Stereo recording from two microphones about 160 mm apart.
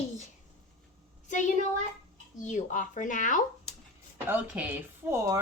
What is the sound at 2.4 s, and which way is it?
Speech, 50° left (ahead or behind).